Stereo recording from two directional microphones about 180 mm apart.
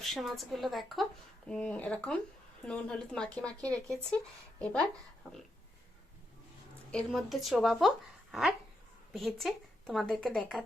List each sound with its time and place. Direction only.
0.0 s speech: centre (ahead or behind)
6.9 s speech: centre (ahead or behind)